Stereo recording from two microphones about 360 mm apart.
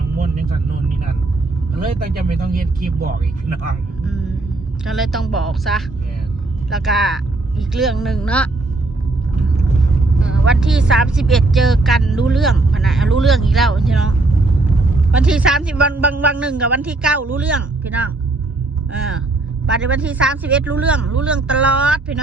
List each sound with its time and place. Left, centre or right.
1.8 s speech: right
4.9 s speech: centre
10.2 s speech: centre
15.1 s speech: centre
19.6 s speech: centre